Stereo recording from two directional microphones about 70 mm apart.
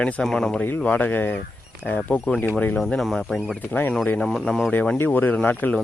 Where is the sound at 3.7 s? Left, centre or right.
Left.